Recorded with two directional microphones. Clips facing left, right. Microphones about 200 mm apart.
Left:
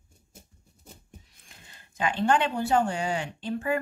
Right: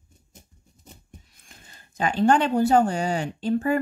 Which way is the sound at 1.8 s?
40° right (ahead or behind).